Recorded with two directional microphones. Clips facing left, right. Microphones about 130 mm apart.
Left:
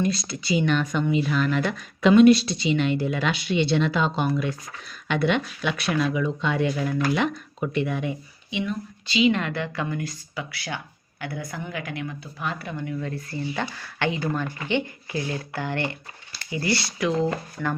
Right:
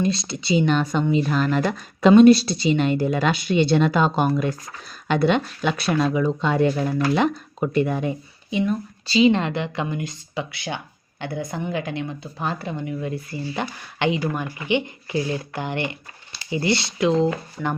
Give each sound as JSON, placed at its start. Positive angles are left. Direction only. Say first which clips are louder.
{"t": 0.0, "sound": "speech", "louder": "right 2 dB", "side_deg": -25}